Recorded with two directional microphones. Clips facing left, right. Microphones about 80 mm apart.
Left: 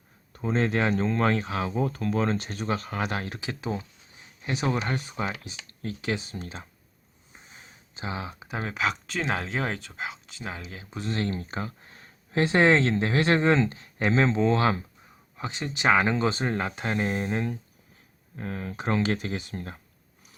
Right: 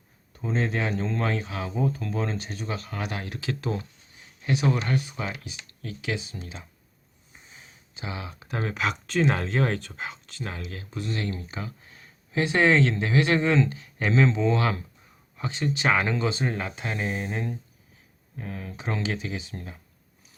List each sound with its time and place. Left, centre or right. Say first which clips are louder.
0.3 s speech: left 2 dB; left
3.4 s speech: right 2 dB; centre
4.4 s speech: right 2 dB; left
7.9 s speech: left 2 dB; left
8.4 s speech: right 1 dB; centre
10.9 s speech: left 2 dB; left
15.4 s speech: right 3 dB; left
16.2 s speech: left 1 dB; left